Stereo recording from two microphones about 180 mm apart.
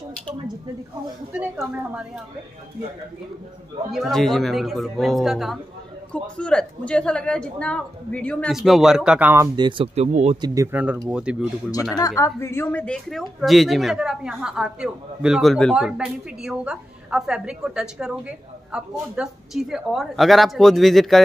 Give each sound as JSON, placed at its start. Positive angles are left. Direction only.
{"t": 1.3, "sound": "a woman's voice", "side_deg": -10}
{"t": 3.9, "sound": "speech", "side_deg": 0}
{"t": 9.6, "sound": "a woman's voice", "side_deg": -25}
{"t": 12.2, "sound": "speech", "side_deg": 15}